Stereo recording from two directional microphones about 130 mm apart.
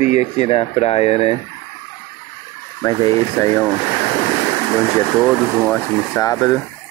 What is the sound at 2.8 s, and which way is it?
Speech, 25° left (ahead or behind).